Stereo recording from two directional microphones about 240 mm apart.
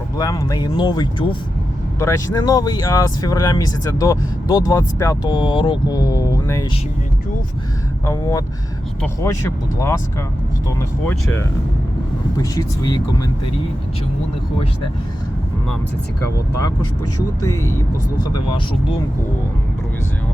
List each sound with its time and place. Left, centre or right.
0.2 s speech: centre
8.0 s speech: centre
12.4 s speech: centre
17.4 s speech: centre